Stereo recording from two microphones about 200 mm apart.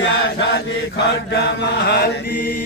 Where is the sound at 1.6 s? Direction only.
55° left (ahead or behind).